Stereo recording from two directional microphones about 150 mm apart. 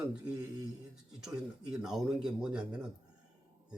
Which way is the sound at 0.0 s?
10° right (ahead or behind).